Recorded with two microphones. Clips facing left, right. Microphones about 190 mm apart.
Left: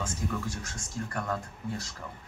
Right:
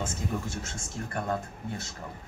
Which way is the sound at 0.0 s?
25° right (ahead or behind).